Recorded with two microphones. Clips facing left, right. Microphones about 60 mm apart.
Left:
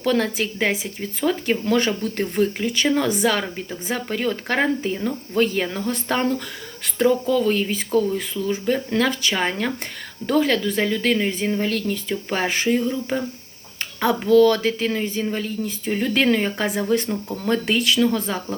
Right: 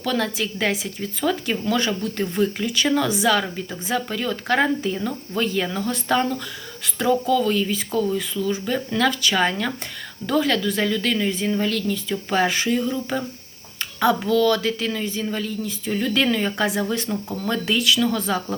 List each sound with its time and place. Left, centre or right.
0.0 s speech: left
1.6 s speech: left
2.6 s speech: left